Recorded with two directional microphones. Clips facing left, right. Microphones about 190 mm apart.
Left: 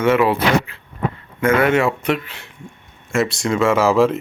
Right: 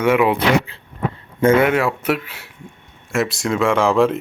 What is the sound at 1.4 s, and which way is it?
Speech, 25° right (ahead or behind).